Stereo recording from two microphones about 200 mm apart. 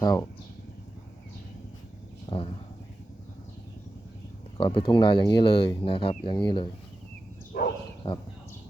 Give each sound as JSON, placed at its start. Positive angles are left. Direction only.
{"t": 0.0, "sound": "speech", "side_deg": 15}
{"t": 2.3, "sound": "speech", "side_deg": 20}
{"t": 4.5, "sound": "speech", "side_deg": 25}
{"t": 7.5, "sound": "dog", "side_deg": 50}
{"t": 8.0, "sound": "speech", "side_deg": 30}